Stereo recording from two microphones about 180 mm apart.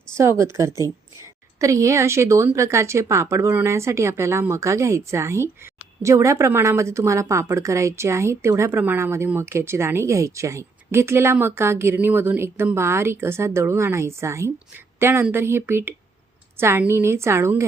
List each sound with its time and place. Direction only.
0.2 s a woman's voice: 15° right (ahead or behind)